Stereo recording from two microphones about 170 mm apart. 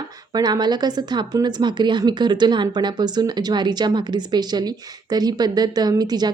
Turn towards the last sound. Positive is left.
turn(degrees=-25)  # may be behind; listen again after turning